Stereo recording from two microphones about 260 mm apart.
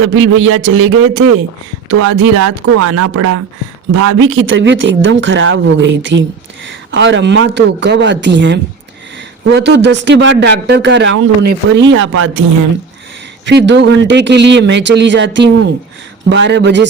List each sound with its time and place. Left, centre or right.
0.1 s a man's voice: right
4.1 s a man's voice: right
13.4 s a man's voice: right